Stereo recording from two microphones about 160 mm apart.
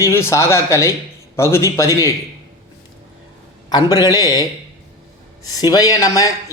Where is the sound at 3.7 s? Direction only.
25° left (ahead or behind).